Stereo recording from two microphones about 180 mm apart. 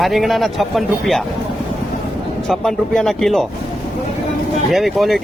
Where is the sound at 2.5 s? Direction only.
5° left (ahead or behind).